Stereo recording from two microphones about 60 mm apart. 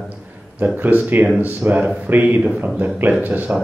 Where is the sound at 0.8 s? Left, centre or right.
Right.